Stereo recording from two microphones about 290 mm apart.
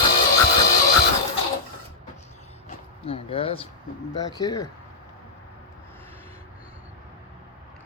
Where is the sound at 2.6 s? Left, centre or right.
Centre.